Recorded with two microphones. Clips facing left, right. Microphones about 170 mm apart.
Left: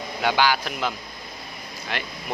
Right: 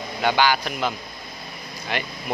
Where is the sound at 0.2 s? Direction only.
Centre (ahead or behind).